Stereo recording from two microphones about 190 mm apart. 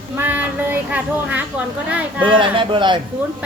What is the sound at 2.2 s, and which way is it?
Speech, 25° right (ahead or behind).